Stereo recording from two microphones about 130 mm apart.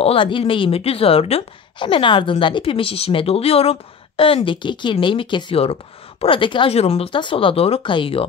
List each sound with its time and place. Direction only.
0.0 s speech: 45° left (ahead or behind)